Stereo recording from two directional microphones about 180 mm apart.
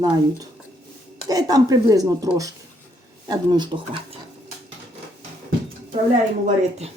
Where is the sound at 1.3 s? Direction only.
20° right (ahead or behind).